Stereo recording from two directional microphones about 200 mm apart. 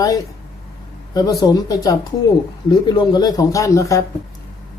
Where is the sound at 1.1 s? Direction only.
20° left (ahead or behind).